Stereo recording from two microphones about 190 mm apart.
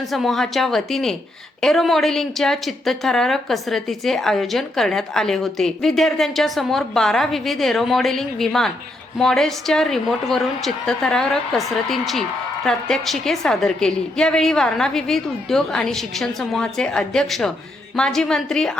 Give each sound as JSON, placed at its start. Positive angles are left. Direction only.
{"t": 0.1, "sound": "speech", "side_deg": 0}